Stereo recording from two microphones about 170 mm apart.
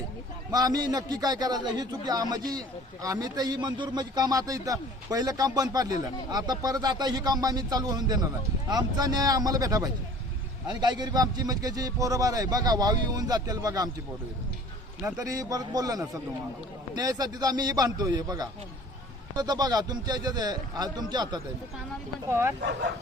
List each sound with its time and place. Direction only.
0.5 s a man's voice: 20° right (ahead or behind)
15.2 s a man's voice: 20° right (ahead or behind)
22.3 s speech: 15° right (ahead or behind)